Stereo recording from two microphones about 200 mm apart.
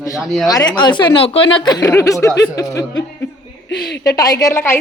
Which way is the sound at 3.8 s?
55° left (ahead or behind).